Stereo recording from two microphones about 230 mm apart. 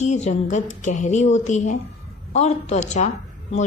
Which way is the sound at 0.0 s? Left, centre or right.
Left.